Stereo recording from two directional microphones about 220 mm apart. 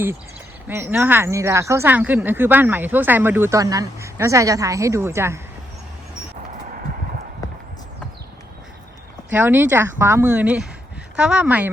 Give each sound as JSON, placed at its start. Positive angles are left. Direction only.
{"t": 0.7, "sound": "speech", "side_deg": -10}
{"t": 7.4, "sound": "horse", "side_deg": 15}
{"t": 9.3, "sound": "speech", "side_deg": -10}